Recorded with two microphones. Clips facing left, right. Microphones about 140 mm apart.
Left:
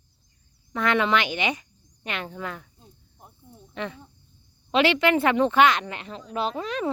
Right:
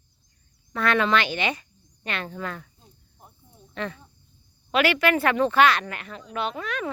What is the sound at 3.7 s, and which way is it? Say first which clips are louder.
Speech: right 1 dB; 15° left (ahead or behind).